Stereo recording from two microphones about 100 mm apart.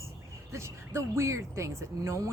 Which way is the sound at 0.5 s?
30° right (ahead or behind).